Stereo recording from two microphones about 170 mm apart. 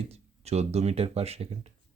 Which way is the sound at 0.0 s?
40° right (ahead or behind).